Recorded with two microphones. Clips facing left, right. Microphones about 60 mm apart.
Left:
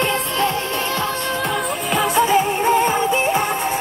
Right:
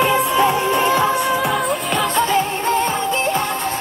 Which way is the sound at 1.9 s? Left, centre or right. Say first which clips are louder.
Left 3 dB; centre.